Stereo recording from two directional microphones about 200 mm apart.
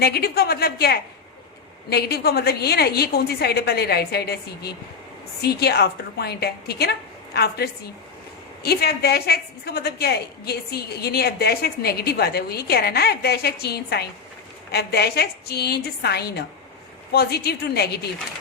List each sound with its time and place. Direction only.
0.0 s a woman's voice: 50° left (ahead or behind)